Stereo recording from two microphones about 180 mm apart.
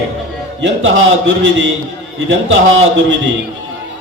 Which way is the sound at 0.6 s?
85° right.